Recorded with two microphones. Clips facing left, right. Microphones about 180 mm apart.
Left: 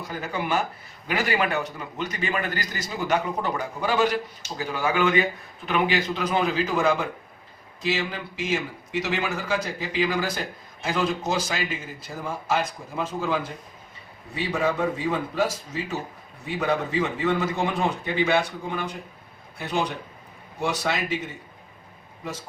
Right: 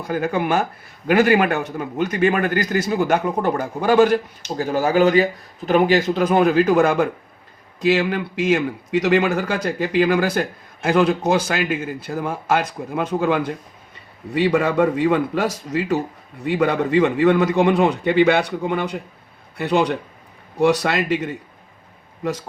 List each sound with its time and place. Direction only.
0.1 s a man's voice: 50° right (ahead or behind)